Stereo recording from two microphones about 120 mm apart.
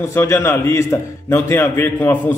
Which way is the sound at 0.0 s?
20° left (ahead or behind).